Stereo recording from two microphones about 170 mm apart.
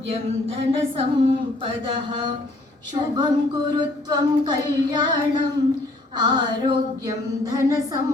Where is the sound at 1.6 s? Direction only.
30° right (ahead or behind).